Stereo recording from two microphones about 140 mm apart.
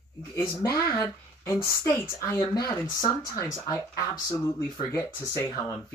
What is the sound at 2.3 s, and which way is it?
Speech, 30° left (ahead or behind).